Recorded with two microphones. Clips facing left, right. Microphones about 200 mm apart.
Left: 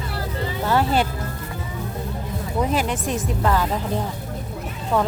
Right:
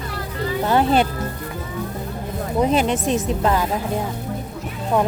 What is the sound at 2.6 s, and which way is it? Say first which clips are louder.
Speech: right 4 dB; 25° right (ahead or behind).